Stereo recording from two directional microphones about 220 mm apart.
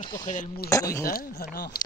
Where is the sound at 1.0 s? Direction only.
40° left (ahead or behind).